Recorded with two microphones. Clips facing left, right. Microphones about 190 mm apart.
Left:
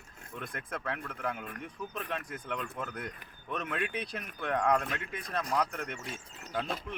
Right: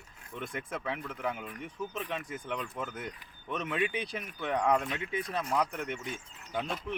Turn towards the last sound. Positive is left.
turn(degrees=-5)  # may be behind; listen again after turning